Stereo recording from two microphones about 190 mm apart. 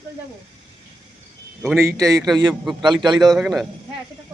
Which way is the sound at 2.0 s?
20° right (ahead or behind).